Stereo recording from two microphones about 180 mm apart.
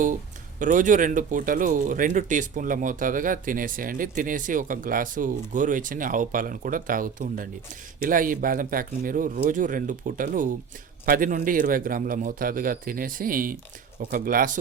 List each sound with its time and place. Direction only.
0.6 s speech: 45° right (ahead or behind)